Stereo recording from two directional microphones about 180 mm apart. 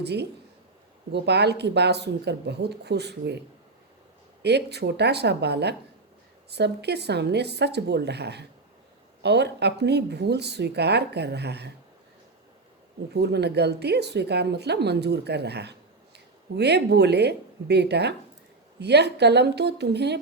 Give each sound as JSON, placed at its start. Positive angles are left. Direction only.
{"t": 0.0, "sound": "speech", "side_deg": -65}
{"t": 4.4, "sound": "speech", "side_deg": -65}
{"t": 13.1, "sound": "speech", "side_deg": -65}